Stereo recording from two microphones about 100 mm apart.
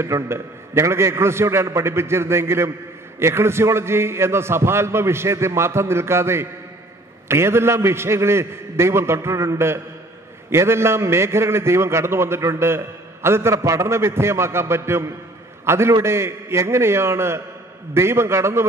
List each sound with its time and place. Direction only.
0.0 s a man's voice: 25° right (ahead or behind)